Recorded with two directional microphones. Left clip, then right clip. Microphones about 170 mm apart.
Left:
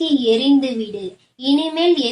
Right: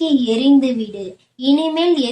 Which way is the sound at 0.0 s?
40° right (ahead or behind).